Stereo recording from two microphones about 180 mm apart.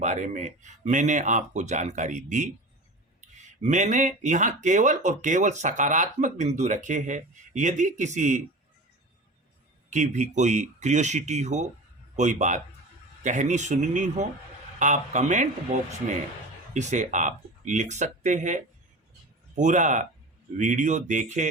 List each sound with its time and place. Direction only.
0.0 s speech: 40° right (ahead or behind)
9.9 s speech: 40° right (ahead or behind)
16.7 s speech: 40° right (ahead or behind)